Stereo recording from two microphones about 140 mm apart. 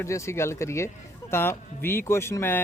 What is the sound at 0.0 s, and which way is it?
Speech, 20° left (ahead or behind).